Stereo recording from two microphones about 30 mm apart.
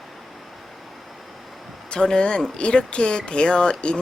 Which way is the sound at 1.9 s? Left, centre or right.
Left.